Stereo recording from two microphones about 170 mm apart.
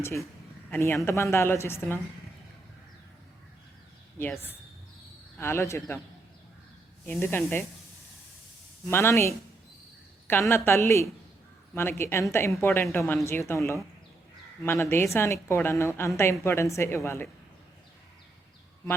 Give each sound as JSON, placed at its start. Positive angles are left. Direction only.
{"t": 0.7, "sound": "a woman's voice", "side_deg": 15}
{"t": 4.2, "sound": "a woman's voice", "side_deg": 10}
{"t": 7.1, "sound": "a woman's voice", "side_deg": 15}
{"t": 8.9, "sound": "a woman's voice", "side_deg": 15}